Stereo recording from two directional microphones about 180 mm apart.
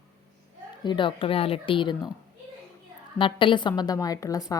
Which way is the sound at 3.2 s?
30° left (ahead or behind).